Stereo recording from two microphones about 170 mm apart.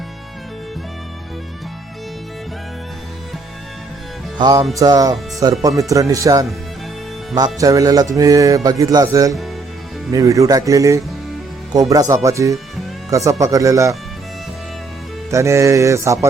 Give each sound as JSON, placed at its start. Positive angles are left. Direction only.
{"t": 4.4, "sound": "music", "side_deg": -25}
{"t": 4.7, "sound": "speech", "side_deg": -20}
{"t": 15.3, "sound": "speech", "side_deg": -15}